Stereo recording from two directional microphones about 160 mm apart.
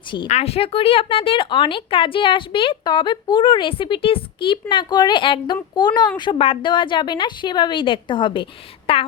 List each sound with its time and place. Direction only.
0.3 s a woman's voice: 40° left (ahead or behind)